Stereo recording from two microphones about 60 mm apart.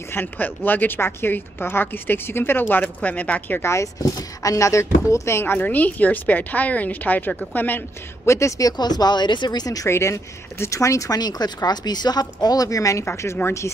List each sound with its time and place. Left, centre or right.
0.1 s a woman's voice: left
3.6 s speech: left
5.4 s a woman's voice: left
8.3 s speech: left
9.0 s speech: left
9.8 s speech: left
13.0 s speech: left